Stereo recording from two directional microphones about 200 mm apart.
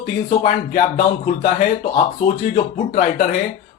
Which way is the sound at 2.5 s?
40° left (ahead or behind).